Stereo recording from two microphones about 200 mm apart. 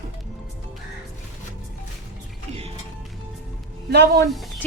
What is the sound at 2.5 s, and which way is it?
Music, 30° right (ahead or behind).